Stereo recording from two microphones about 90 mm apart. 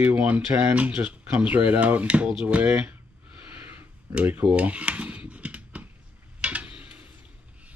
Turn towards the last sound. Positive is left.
turn(degrees=-15)  # may be behind; listen again after turning